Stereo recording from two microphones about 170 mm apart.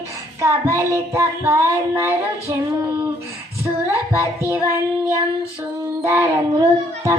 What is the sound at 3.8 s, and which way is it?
Child singing, 15° right (ahead or behind).